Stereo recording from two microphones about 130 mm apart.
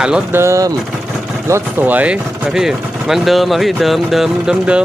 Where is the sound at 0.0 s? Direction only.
5° right (ahead or behind).